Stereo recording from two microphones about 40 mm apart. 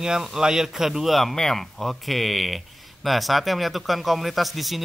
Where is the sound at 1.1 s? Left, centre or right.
Centre.